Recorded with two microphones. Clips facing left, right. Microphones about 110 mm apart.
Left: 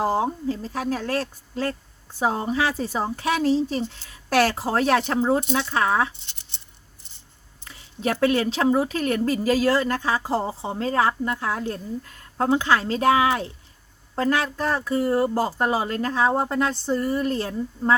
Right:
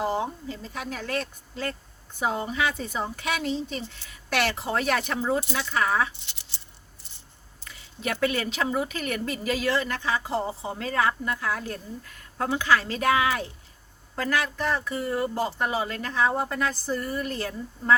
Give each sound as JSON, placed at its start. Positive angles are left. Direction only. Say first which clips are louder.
{"t": 0.0, "sound": "speech", "louder": "left 5 dB", "side_deg": 40}
{"t": 7.6, "sound": "speech", "louder": "left 6 dB", "side_deg": 30}